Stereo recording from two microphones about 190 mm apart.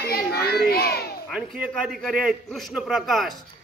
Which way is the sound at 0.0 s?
55° left (ahead or behind).